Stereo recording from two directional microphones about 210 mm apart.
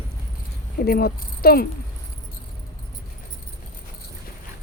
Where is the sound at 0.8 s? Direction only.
45° left (ahead or behind).